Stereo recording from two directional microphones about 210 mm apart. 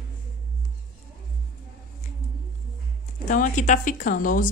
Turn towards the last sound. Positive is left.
turn(degrees=40)  # may be behind; listen again after turning